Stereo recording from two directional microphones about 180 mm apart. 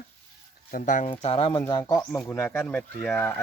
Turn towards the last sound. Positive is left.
turn(degrees=10)  # may be behind; listen again after turning